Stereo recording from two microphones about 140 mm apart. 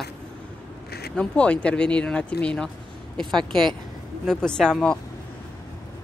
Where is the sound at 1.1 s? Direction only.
5° left (ahead or behind).